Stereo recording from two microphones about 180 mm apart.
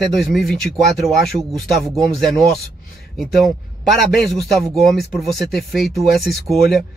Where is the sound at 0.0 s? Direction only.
Centre (ahead or behind).